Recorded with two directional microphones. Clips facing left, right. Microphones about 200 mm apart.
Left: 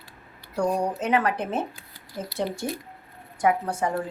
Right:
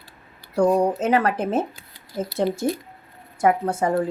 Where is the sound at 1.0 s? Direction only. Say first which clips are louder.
Right 4 dB; 40° right (ahead or behind).